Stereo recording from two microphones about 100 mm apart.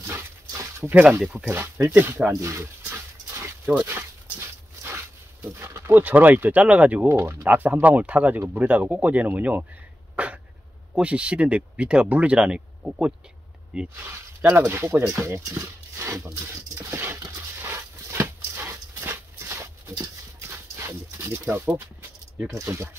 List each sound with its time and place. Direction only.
0.0 s dog: 30° right (ahead or behind)
0.8 s speech: 20° right (ahead or behind)
2.8 s dog: 25° right (ahead or behind)
3.8 s speech: 25° right (ahead or behind)
10.1 s dog: 15° right (ahead or behind)
11.0 s speech: 10° right (ahead or behind)
14.7 s speech: 25° right (ahead or behind)
15.6 s a sound: 30° right (ahead or behind)
17.6 s dog: 25° right (ahead or behind)
22.6 s speech: 25° right (ahead or behind)